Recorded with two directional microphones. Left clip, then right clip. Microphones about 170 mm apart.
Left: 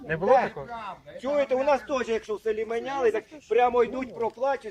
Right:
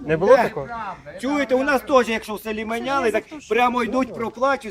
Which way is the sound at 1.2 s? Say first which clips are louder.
Right 3 dB; 50° right (ahead or behind).